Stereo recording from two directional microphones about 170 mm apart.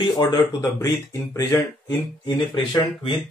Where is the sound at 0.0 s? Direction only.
30° left (ahead or behind).